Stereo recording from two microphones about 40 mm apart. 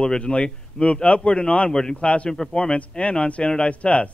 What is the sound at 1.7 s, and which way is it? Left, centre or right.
A man's voice, centre.